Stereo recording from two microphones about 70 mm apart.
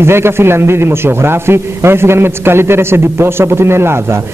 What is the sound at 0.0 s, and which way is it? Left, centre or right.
A man's voice, right.